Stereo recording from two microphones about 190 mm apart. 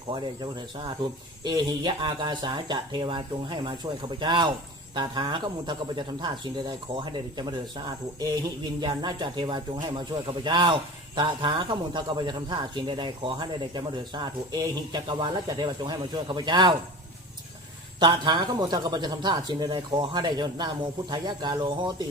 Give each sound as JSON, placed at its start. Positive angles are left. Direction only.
{"t": 0.1, "sound": "speech", "side_deg": -25}
{"t": 8.8, "sound": "speech", "side_deg": -25}
{"t": 18.0, "sound": "speech", "side_deg": -25}